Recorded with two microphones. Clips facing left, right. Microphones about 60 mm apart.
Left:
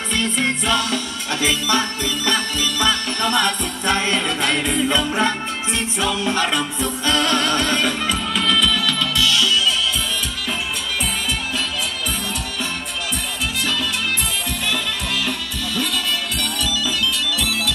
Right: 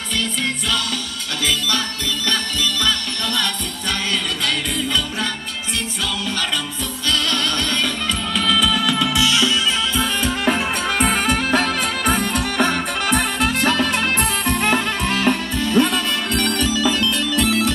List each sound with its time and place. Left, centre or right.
0.2 s music: left
8.4 s music: centre; by 9.5 s right
11.0 s music: right